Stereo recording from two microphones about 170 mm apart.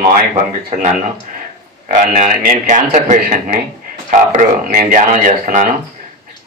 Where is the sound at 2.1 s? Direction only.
50° right (ahead or behind).